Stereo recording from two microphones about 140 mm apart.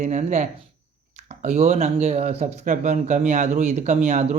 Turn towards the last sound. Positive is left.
turn(degrees=-55)  # may be behind; listen again after turning